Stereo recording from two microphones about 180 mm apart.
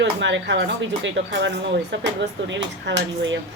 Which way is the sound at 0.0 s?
80° right.